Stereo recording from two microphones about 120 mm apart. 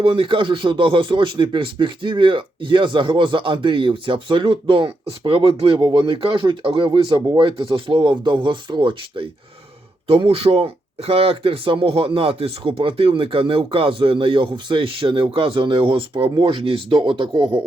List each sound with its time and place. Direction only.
0.0 s speech: 45° right (ahead or behind)